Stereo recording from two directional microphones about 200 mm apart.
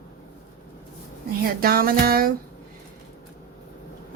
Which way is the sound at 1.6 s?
45° right (ahead or behind).